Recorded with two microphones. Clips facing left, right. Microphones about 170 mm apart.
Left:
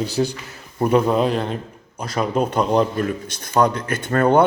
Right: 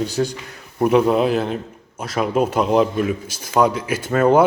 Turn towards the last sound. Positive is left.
turn(degrees=-5)  # may be behind; listen again after turning